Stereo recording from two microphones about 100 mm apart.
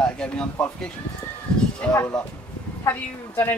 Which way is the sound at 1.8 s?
15° left (ahead or behind).